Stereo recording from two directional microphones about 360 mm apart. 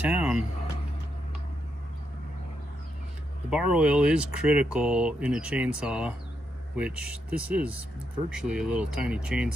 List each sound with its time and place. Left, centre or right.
0.0 s speech: centre
3.4 s speech: centre